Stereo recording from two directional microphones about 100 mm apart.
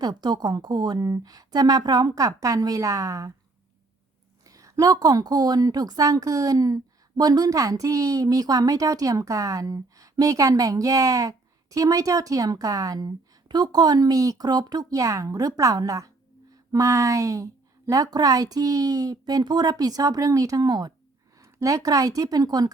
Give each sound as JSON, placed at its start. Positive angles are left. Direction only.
{"t": 0.0, "sound": "a woman's voice", "side_deg": -45}
{"t": 4.4, "sound": "a woman's voice", "side_deg": -35}